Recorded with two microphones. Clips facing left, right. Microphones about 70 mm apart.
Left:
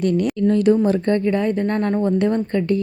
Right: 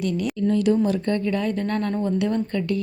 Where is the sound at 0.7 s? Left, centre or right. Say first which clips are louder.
Left 4 dB; left.